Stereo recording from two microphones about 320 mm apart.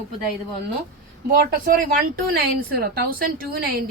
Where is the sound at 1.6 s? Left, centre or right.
Right.